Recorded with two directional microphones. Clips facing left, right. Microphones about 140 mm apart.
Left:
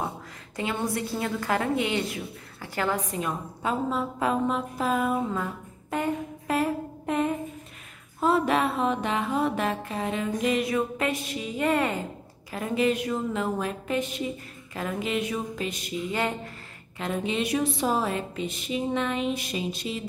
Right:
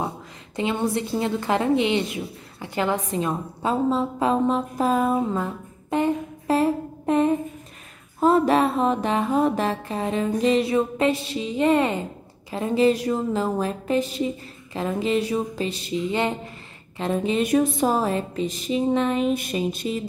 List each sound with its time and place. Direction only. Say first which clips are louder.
0.6 s a woman's voice: right 5 dB; 25° right (ahead or behind)
17.0 s a woman's voice: right 5 dB; 35° right (ahead or behind)